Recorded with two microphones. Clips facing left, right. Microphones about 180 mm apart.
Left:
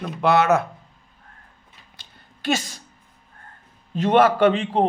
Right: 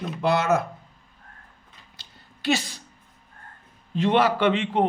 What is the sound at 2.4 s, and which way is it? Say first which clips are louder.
Speech: even; 45° left (ahead or behind).